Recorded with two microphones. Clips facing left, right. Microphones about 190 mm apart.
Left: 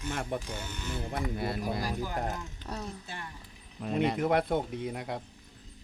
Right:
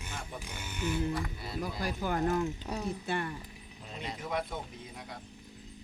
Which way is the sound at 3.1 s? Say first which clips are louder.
Right 9 dB; 65° right (ahead or behind).